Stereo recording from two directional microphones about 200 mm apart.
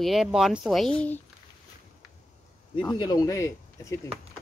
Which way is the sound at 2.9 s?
20° left (ahead or behind).